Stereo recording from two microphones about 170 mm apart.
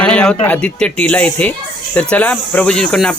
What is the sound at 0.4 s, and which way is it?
Speech, 5° left (ahead or behind).